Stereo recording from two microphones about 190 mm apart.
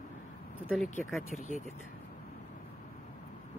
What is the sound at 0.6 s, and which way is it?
Speech, centre (ahead or behind).